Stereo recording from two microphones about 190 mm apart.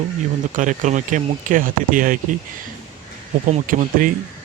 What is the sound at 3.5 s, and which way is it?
Speech, 45° right (ahead or behind).